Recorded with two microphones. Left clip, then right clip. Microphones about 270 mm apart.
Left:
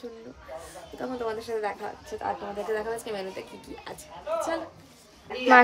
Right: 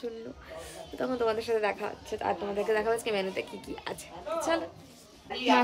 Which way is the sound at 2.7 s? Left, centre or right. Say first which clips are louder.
Right 3 dB; right.